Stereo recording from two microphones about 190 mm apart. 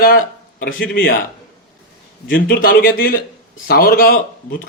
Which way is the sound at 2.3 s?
50° left (ahead or behind).